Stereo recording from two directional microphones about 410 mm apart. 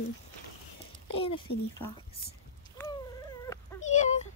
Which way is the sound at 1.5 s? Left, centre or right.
Left.